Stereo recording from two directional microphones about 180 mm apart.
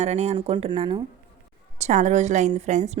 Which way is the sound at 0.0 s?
40° right (ahead or behind).